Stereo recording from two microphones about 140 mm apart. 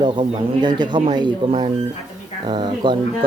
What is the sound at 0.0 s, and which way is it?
Speech, 30° right (ahead or behind).